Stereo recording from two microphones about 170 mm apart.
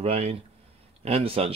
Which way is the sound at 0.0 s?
35° right (ahead or behind).